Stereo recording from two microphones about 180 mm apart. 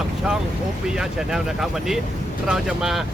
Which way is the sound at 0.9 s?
5° right (ahead or behind).